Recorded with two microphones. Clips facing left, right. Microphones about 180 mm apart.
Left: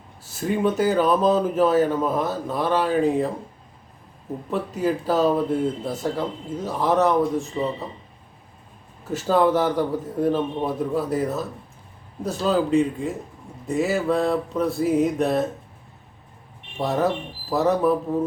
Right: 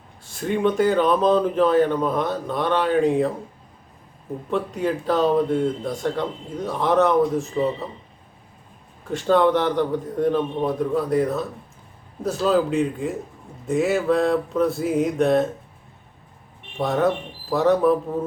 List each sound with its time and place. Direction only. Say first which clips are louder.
0.3 s speech: right 1 dB; 5° left (ahead or behind)
4.5 s speech: even; 5° left (ahead or behind)
9.0 s speech: right 1 dB; 5° left (ahead or behind)
16.7 s speech: right 2 dB; centre (ahead or behind)